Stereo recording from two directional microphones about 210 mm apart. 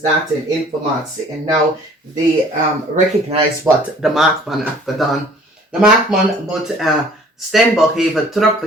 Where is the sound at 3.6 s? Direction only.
Centre (ahead or behind).